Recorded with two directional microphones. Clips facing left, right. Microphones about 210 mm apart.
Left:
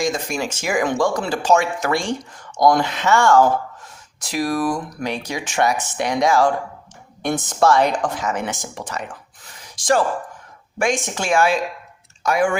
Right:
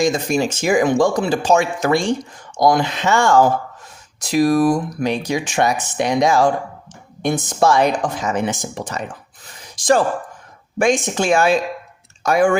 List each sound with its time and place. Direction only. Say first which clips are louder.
0.0 s speech: right 5 dB; 20° right (ahead or behind)
10.8 s speech: right 5 dB; 20° right (ahead or behind)
12.2 s speech: right 4 dB; 40° right (ahead or behind)